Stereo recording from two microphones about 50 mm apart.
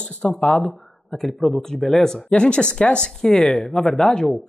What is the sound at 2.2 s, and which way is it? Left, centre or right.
Speech, left.